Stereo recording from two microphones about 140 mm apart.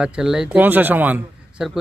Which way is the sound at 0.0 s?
5° right (ahead or behind).